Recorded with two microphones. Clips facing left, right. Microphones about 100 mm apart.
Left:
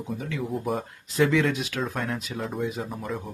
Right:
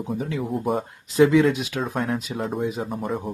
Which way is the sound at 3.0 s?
40° right (ahead or behind).